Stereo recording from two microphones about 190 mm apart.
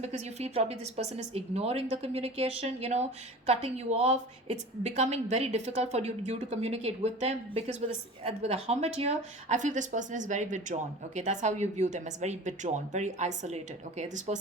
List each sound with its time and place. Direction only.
0.0 s a woman's voice: 35° right (ahead or behind)